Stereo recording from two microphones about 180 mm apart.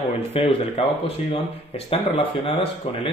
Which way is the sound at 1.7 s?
30° left (ahead or behind).